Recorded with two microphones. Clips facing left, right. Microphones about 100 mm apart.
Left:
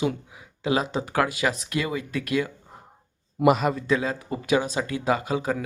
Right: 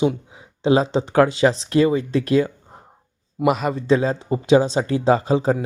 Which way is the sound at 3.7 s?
30° right (ahead or behind).